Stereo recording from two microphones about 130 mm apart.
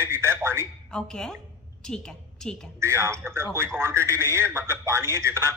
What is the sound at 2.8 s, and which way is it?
Speech, 20° right (ahead or behind).